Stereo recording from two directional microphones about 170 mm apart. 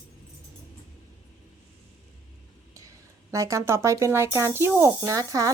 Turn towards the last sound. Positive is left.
turn(degrees=-20)  # may be behind; listen again after turning